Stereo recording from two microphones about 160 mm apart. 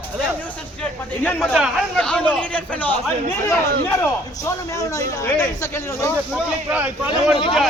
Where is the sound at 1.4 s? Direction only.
Centre (ahead or behind).